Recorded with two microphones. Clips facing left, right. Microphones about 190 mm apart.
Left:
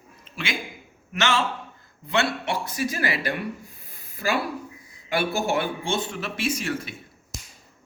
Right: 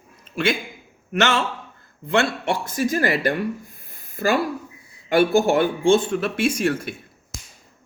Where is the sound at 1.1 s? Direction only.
55° right (ahead or behind).